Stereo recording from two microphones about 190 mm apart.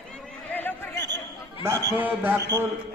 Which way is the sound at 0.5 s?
10° left (ahead or behind).